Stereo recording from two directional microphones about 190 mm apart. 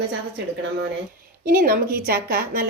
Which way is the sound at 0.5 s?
70° right (ahead or behind).